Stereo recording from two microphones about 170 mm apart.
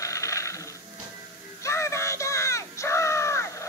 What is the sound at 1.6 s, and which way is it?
Crow, 15° left (ahead or behind).